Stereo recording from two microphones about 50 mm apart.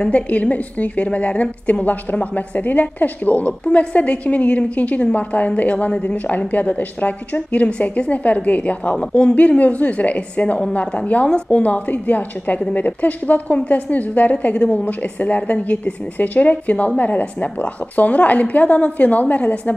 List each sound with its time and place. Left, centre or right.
0.0 s a woman's voice: left